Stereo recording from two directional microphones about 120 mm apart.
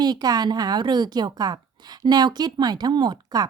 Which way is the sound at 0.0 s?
35° right (ahead or behind).